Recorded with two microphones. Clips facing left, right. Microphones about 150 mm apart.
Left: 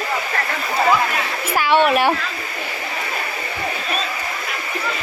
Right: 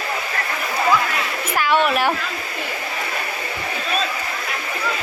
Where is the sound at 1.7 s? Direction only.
25° left (ahead or behind).